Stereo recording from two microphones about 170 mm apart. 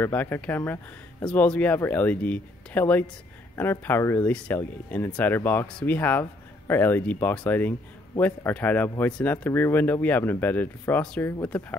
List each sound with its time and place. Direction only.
0.0 s speech: 10° left (ahead or behind)